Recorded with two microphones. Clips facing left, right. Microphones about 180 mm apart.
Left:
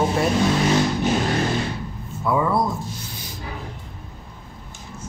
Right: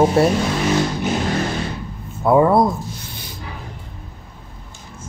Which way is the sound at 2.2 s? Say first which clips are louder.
Right 7 dB; 50° right (ahead or behind).